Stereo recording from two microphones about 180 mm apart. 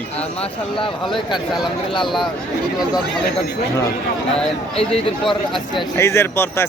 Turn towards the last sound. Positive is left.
turn(degrees=15)  # may be behind; listen again after turning